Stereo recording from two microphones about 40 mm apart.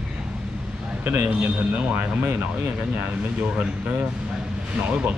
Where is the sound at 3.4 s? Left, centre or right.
Right.